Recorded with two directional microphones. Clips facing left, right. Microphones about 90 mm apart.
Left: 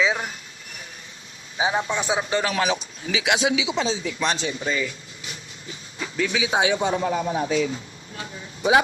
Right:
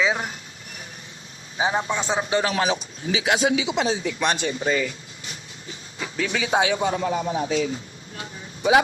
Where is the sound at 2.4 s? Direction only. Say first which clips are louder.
Even; 30° right (ahead or behind).